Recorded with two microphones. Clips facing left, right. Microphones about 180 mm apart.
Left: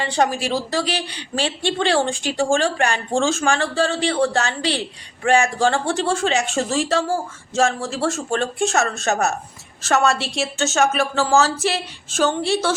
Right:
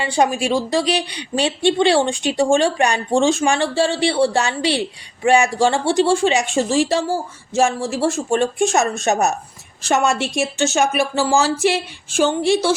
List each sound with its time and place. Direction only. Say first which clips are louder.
0.0 s a woman's voice: right 2 dB; 10° right (ahead or behind)